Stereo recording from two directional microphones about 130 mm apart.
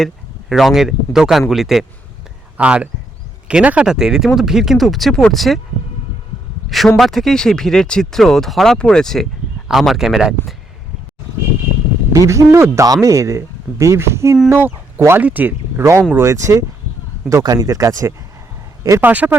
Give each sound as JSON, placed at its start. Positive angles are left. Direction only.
{"t": 0.0, "sound": "speech", "side_deg": 0}
{"t": 6.7, "sound": "speech", "side_deg": 0}
{"t": 12.1, "sound": "speech", "side_deg": -25}
{"t": 19.0, "sound": "speech", "side_deg": -10}